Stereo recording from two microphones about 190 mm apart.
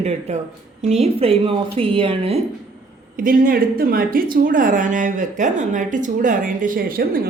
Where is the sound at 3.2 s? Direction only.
45° right (ahead or behind).